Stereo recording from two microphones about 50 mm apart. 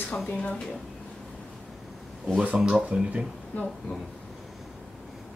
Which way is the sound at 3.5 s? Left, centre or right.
Left.